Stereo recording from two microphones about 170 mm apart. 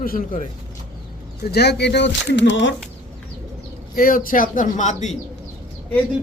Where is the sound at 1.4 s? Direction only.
70° left (ahead or behind); by 2.7 s 90° left.